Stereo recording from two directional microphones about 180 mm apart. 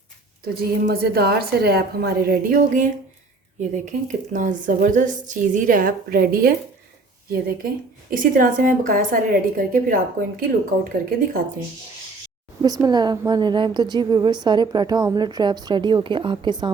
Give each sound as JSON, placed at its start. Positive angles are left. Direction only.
{"t": 0.5, "sound": "a woman's voice", "side_deg": -60}
{"t": 12.6, "sound": "a woman's voice", "side_deg": -20}